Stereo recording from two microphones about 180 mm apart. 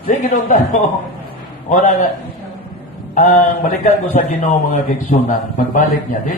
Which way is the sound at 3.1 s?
45° left (ahead or behind).